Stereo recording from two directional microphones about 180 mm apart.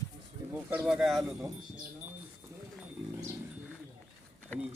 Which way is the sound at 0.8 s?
Centre (ahead or behind).